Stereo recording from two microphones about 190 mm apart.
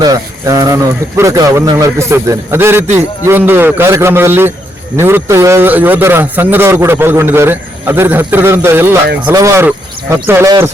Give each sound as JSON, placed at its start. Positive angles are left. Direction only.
{"t": 0.0, "sound": "a man's voice", "side_deg": -20}